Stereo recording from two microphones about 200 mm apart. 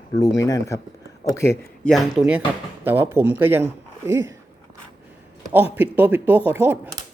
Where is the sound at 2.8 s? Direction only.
10° right (ahead or behind).